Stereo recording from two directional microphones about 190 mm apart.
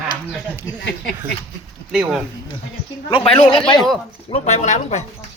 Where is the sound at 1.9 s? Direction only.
5° right (ahead or behind).